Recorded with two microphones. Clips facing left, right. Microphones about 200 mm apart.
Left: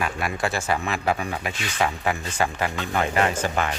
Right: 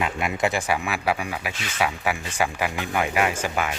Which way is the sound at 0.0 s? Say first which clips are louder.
Right 2 dB; 20° right (ahead or behind).